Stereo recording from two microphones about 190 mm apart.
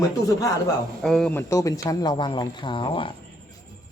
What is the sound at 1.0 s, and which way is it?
Speech, 5° left (ahead or behind).